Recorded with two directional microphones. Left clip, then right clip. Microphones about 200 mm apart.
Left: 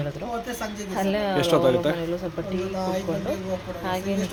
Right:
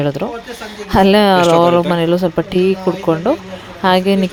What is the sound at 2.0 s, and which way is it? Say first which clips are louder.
Speech: right 14 dB; 50° right (ahead or behind).